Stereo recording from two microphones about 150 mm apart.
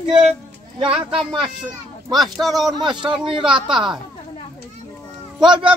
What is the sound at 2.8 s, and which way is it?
Speech, 30° right (ahead or behind).